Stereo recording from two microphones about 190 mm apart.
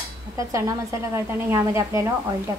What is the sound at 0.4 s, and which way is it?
A woman's voice, 15° right (ahead or behind).